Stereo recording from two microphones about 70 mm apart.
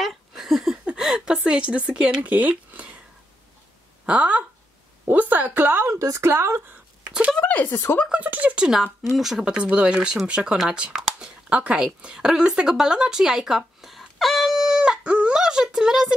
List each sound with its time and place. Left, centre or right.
0.0 s a sound: centre
0.8 s speech: centre
4.0 s a woman's voice: centre
5.9 s speech: right
6.2 s speech: right
7.1 s a sound: centre
7.3 s speech: left
8.1 s speech: right
8.6 s speech: centre